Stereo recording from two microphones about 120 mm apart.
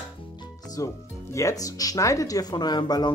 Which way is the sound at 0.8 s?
30° left (ahead or behind).